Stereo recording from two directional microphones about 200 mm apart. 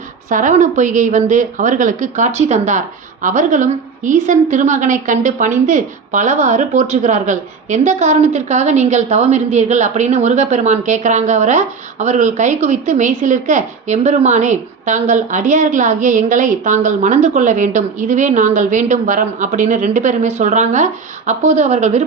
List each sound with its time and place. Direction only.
0.3 s a woman's voice: 40° right (ahead or behind)